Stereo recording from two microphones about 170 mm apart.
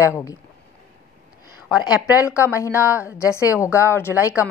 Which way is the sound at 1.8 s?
20° left (ahead or behind).